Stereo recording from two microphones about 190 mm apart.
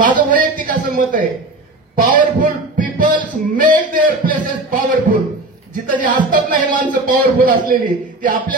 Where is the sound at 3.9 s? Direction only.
45° right (ahead or behind).